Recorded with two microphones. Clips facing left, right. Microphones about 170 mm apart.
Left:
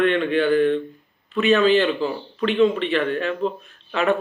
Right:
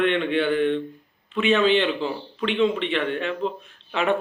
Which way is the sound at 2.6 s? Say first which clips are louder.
Left 4 dB; 20° right (ahead or behind).